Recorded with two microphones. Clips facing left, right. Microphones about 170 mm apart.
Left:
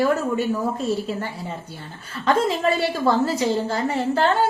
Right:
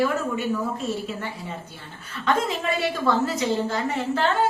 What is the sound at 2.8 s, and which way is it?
A woman's voice, 35° left (ahead or behind).